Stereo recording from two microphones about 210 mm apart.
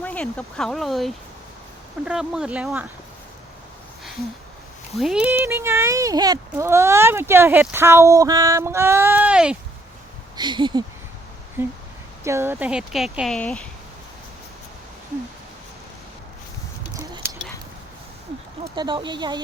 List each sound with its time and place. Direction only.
0.0 s speech: 5° left (ahead or behind)
4.9 s speech: centre (ahead or behind)
10.3 s speech: 20° right (ahead or behind)
11.6 s speech: 10° right (ahead or behind); by 13.7 s 5° left (ahead or behind)
18.6 s speech: 20° right (ahead or behind)